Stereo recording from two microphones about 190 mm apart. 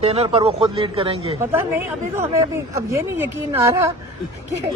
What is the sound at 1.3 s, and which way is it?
Speech, 15° right (ahead or behind).